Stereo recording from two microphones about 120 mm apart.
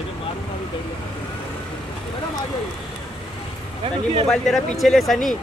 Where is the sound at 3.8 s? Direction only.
55° right (ahead or behind).